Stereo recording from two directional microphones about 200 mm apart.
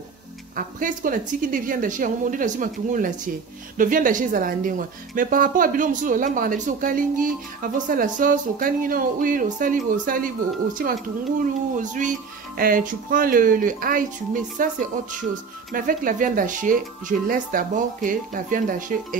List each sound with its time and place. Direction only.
0.6 s a woman's voice: 40° right (ahead or behind)